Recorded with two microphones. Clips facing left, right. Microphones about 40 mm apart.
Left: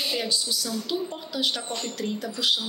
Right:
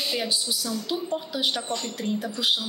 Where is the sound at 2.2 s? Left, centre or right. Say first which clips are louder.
Left 1 dB; centre.